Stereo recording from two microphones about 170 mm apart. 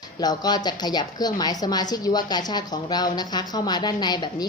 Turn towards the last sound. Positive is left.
turn(degrees=25)  # may be behind; listen again after turning